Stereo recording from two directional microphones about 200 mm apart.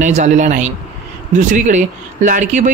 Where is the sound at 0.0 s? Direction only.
35° right (ahead or behind).